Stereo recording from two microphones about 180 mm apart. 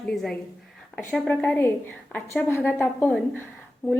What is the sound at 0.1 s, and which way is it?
A woman's voice, 5° left (ahead or behind).